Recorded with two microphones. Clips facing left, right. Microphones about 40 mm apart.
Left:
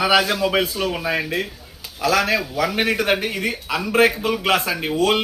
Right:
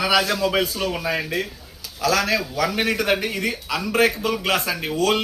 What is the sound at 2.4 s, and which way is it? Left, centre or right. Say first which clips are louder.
Speech: left 1 dB; centre.